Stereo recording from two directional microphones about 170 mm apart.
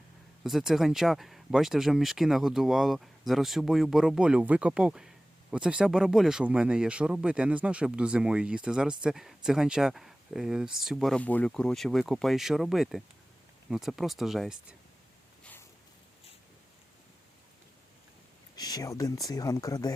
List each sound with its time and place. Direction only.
0.4 s speech: centre (ahead or behind)
18.5 s speech: 25° left (ahead or behind)